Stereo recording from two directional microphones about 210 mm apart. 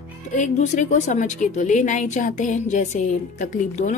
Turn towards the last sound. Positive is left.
turn(degrees=35)  # may be behind; listen again after turning